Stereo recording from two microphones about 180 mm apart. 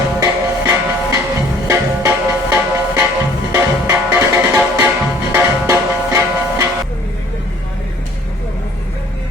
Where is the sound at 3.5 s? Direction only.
15° right (ahead or behind).